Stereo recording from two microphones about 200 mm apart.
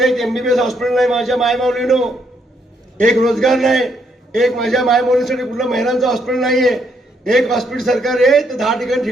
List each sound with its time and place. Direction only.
0.0 s a man's voice: centre (ahead or behind)
3.2 s a man's voice: centre (ahead or behind)